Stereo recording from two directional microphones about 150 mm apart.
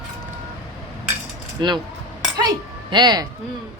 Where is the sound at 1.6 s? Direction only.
30° right (ahead or behind).